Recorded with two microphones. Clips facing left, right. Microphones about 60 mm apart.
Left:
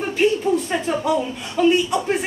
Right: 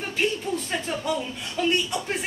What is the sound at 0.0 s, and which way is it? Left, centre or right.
Speech, centre.